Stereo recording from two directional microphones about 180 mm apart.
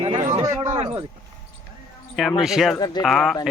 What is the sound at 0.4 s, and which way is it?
Speech, 15° right (ahead or behind).